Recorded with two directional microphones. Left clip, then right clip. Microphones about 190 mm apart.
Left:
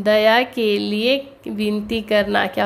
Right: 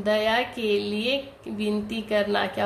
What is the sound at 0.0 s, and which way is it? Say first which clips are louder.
A woman's voice: left 8 dB; 45° left (ahead or behind).